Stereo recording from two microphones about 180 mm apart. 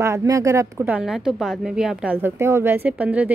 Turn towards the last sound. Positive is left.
turn(degrees=-10)  # may be behind; listen again after turning